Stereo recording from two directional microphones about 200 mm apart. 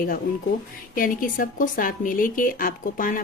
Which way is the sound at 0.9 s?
45° left (ahead or behind).